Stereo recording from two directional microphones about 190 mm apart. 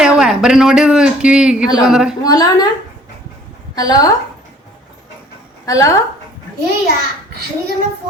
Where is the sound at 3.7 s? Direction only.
20° left (ahead or behind).